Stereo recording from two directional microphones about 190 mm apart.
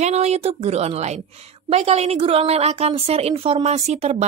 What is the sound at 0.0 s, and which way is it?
A woman's voice, 35° right (ahead or behind).